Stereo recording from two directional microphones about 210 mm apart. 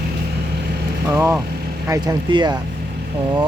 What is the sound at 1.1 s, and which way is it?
Speech, 10° right (ahead or behind).